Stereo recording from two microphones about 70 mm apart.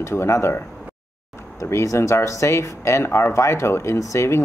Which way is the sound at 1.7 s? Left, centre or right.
Left.